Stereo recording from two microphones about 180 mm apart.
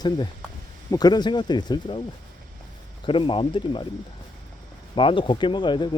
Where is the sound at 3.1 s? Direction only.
30° left (ahead or behind).